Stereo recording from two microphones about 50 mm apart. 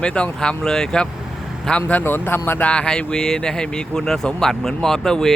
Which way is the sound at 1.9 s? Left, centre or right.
Left.